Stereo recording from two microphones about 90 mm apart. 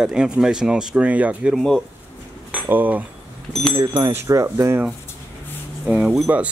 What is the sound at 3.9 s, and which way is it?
Speech, 30° right (ahead or behind).